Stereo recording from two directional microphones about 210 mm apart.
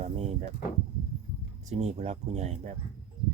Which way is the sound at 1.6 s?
30° right (ahead or behind).